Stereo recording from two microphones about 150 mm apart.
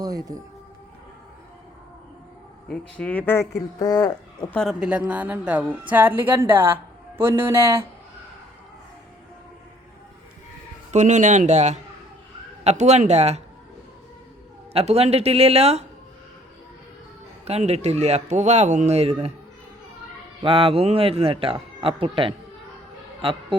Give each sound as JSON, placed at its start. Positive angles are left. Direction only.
{"t": 0.0, "sound": "speech", "side_deg": -25}
{"t": 2.6, "sound": "speech", "side_deg": 10}
{"t": 3.8, "sound": "speech", "side_deg": 25}
{"t": 4.7, "sound": "speech", "side_deg": -5}
{"t": 10.9, "sound": "speech", "side_deg": -55}
{"t": 14.7, "sound": "speech", "side_deg": -45}
{"t": 17.4, "sound": "speech", "side_deg": -45}
{"t": 20.4, "sound": "speech", "side_deg": -40}